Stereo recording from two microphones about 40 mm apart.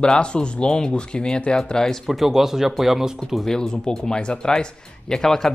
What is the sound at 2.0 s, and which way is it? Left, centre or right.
Speech, centre.